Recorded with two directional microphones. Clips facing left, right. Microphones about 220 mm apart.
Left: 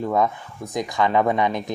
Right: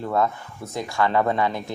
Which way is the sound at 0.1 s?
15° left (ahead or behind).